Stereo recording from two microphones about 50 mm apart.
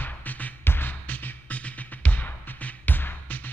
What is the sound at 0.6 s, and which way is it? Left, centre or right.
Music, left.